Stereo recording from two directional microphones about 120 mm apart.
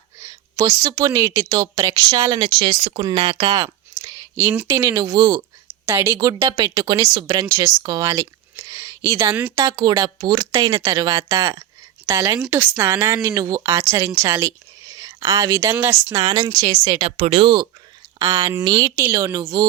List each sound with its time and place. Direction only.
0.2 s a woman's voice: 25° right (ahead or behind)
2.8 s speech: 50° right (ahead or behind)
3.5 s speech: 30° right (ahead or behind)
5.8 s a woman's voice: 20° right (ahead or behind)
6.1 s a woman's voice: 35° right (ahead or behind)
17.1 s speech: 60° right (ahead or behind); by 17.7 s 40° right (ahead or behind)
18.3 s speech: 30° right (ahead or behind)